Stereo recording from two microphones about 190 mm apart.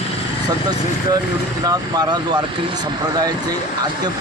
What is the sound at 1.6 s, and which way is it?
Speech, 20° right (ahead or behind).